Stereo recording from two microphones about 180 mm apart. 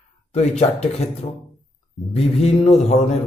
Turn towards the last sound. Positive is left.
turn(degrees=35)  # may be behind; listen again after turning